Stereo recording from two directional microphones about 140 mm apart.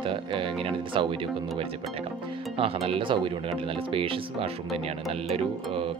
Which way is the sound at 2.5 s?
40° right (ahead or behind).